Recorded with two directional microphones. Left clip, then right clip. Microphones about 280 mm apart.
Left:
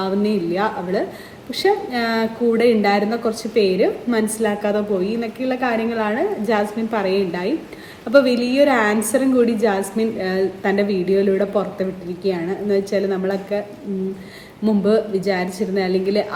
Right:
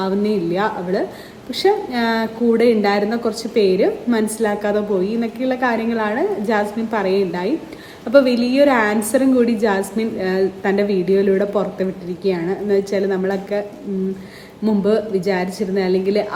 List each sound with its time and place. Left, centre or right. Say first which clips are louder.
0.0 s a woman's voice: right 1 dB; centre
14.6 s a woman's voice: even; centre